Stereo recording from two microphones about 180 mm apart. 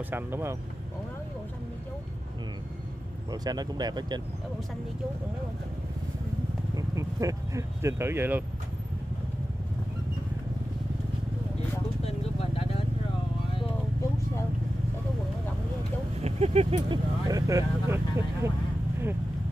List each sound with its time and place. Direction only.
0.1 s speech: 15° right (ahead or behind)
3.3 s speech: 20° right (ahead or behind)
6.7 s speech: 20° right (ahead or behind)
16.2 s speech: 35° right (ahead or behind); by 18.5 s 15° right (ahead or behind)